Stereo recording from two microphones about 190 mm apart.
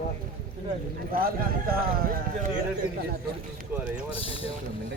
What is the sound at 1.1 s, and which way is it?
Speech, 50° right (ahead or behind).